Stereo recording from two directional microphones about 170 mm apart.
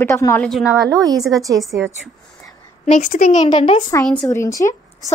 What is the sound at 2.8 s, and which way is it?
Speech, 45° left (ahead or behind).